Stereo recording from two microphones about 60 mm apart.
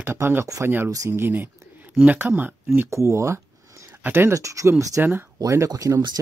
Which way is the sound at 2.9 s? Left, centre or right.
Right.